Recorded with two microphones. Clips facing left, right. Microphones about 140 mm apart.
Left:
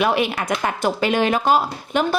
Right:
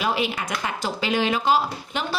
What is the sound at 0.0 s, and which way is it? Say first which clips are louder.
Speech: left 5 dB; 60° left (ahead or behind).